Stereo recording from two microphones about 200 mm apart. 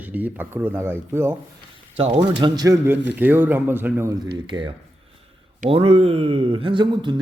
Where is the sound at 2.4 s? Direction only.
20° right (ahead or behind).